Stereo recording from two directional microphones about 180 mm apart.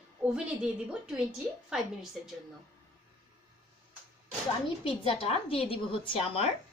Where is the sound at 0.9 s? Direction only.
5° right (ahead or behind).